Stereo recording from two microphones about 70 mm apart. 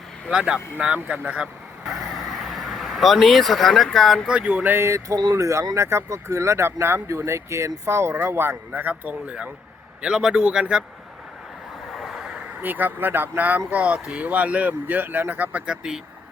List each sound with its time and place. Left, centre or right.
0.3 s speech: centre
0.9 s speech: right
2.4 s speech: centre
4.3 s speech: centre
4.7 s speech: right; by 10.8 s centre
11.9 s vehicle: centre
12.6 s speech: right
15.6 s speech: centre